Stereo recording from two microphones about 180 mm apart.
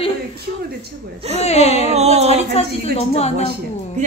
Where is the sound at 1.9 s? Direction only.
35° right (ahead or behind).